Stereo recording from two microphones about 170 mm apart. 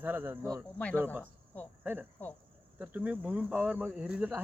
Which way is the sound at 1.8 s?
10° right (ahead or behind).